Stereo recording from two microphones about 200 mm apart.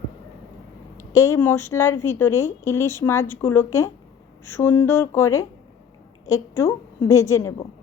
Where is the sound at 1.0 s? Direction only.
15° left (ahead or behind).